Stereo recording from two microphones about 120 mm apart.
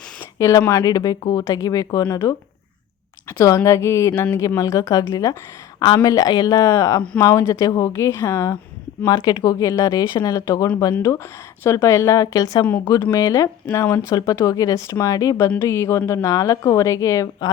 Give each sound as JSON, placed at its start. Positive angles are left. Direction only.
{"t": 0.3, "sound": "speech", "side_deg": 25}
{"t": 9.0, "sound": "a woman's voice", "side_deg": 30}